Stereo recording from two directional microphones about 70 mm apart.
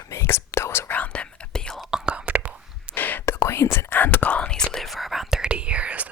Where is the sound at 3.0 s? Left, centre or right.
Left.